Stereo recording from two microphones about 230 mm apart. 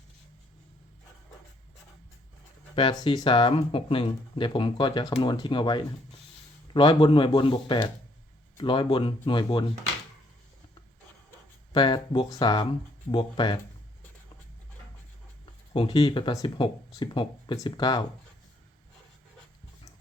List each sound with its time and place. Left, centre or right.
2.7 s speech: centre
11.7 s speech: left
15.7 s speech: left